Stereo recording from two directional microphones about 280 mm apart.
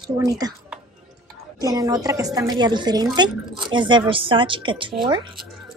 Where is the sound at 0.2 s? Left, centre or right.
Centre.